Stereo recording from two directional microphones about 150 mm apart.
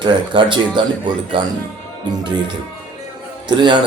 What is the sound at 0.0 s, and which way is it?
Speech, 30° right (ahead or behind).